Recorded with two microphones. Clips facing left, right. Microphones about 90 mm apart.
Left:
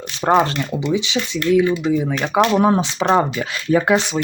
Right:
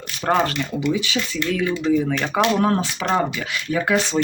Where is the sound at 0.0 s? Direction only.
25° left (ahead or behind).